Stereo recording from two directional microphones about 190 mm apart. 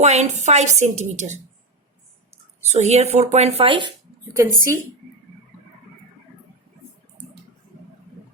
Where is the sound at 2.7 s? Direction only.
35° right (ahead or behind).